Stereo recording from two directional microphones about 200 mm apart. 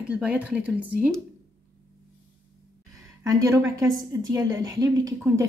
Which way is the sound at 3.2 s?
15° right (ahead or behind).